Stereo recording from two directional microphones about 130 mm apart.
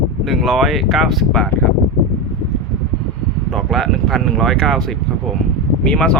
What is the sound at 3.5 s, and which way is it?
Speech, centre (ahead or behind).